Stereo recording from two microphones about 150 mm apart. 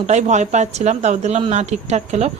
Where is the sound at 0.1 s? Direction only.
50° right (ahead or behind).